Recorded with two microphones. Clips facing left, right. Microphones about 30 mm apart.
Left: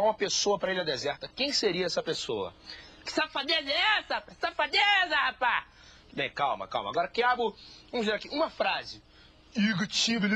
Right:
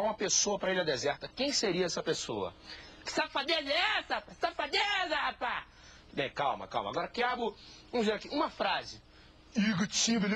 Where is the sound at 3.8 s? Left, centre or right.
Left.